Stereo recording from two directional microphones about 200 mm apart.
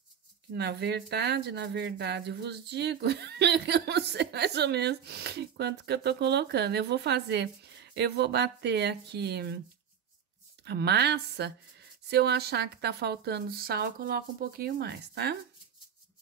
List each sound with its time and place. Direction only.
0.5 s speech: 55° right (ahead or behind)
10.6 s speech: 55° right (ahead or behind)